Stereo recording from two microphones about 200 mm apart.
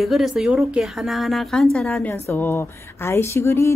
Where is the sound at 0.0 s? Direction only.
Centre (ahead or behind).